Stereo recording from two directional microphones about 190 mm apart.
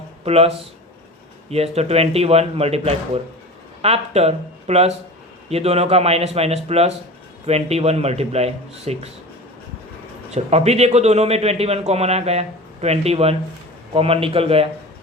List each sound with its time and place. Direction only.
0.3 s a man's voice: 30° right (ahead or behind)
10.3 s a man's voice: 35° right (ahead or behind)